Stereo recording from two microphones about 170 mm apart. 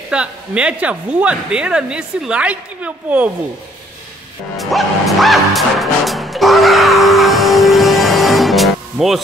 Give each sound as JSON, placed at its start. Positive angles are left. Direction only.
{"t": 0.1, "sound": "speech", "side_deg": -5}
{"t": 4.6, "sound": "music", "side_deg": 0}